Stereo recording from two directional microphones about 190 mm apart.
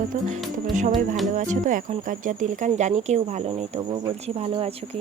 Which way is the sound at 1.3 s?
40° right (ahead or behind).